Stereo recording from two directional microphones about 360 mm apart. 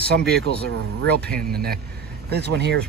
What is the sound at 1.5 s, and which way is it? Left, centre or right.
Speech, right.